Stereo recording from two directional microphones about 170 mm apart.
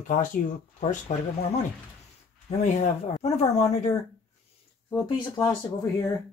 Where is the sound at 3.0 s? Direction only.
40° left (ahead or behind).